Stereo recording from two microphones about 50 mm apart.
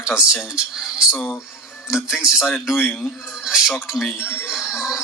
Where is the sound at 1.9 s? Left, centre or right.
Centre.